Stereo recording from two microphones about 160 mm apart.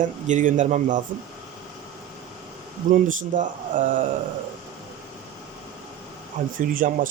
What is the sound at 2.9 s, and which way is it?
Speech, 55° right (ahead or behind).